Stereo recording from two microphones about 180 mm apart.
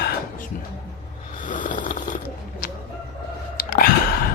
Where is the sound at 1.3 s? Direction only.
45° left (ahead or behind).